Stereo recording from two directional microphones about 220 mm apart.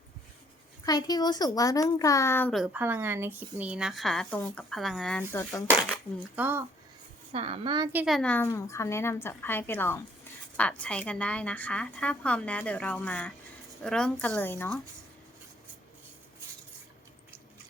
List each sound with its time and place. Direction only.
0.9 s a woman's voice: 15° left (ahead or behind); by 2.8 s centre (ahead or behind)
2.8 s a woman's voice: 10° right (ahead or behind); by 5.6 s 10° left (ahead or behind)
6.3 s speech: 10° right (ahead or behind)
7.3 s a woman's voice: 25° right (ahead or behind)
7.9 s a woman's voice: centre (ahead or behind)